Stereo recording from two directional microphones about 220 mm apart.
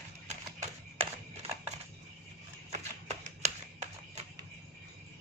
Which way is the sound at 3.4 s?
30° right (ahead or behind).